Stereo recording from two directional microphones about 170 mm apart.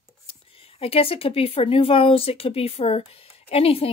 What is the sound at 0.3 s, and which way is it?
A woman's voice, 35° left (ahead or behind).